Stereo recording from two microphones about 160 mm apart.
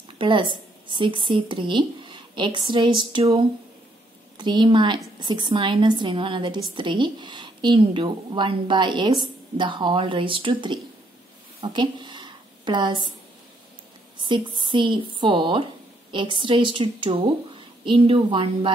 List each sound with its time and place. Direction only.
0.2 s a woman's voice: 30° right (ahead or behind)
11.6 s a sound: 30° right (ahead or behind)
14.2 s speech: 30° right (ahead or behind)